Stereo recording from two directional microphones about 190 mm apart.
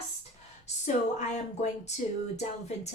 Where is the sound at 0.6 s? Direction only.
40° left (ahead or behind).